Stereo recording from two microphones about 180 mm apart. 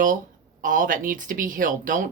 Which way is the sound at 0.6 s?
50° right (ahead or behind).